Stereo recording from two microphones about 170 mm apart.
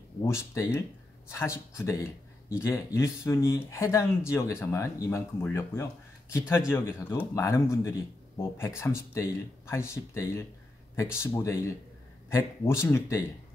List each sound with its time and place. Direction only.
0.2 s speech: 15° left (ahead or behind)